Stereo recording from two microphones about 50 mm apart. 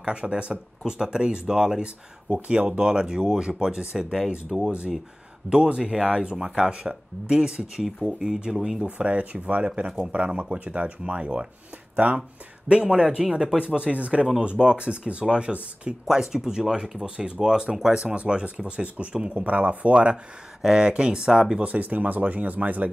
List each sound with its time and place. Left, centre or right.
0.0 s speech: right
5.5 s speech: right
8.9 s speech: right
20.6 s speech: centre
21.5 s speech: right